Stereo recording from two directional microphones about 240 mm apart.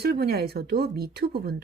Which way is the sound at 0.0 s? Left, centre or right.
Right.